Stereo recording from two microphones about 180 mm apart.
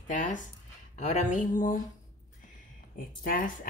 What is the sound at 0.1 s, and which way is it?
A woman's voice, 45° left (ahead or behind).